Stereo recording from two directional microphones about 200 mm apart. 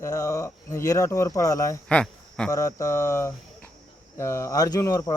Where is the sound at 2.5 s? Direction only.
15° left (ahead or behind).